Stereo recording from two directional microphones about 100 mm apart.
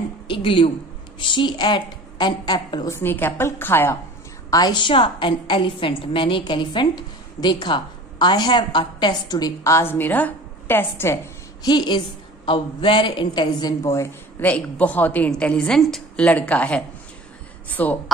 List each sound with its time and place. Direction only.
0.3 s a woman's voice: 60° left (ahead or behind)
2.9 s a woman's voice: 20° left (ahead or behind)
4.5 s a woman's voice: 45° left (ahead or behind)
9.3 s a woman's voice: 35° left (ahead or behind)
11.6 s a woman's voice: 45° left (ahead or behind)
13.8 s speech: 30° left (ahead or behind)
14.4 s a woman's voice: 15° left (ahead or behind)